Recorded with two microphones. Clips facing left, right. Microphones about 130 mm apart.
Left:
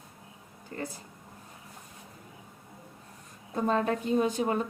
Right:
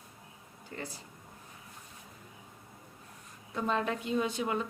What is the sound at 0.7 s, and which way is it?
Speech, 40° left (ahead or behind).